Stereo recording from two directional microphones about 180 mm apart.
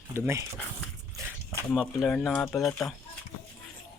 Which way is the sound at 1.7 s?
Centre (ahead or behind).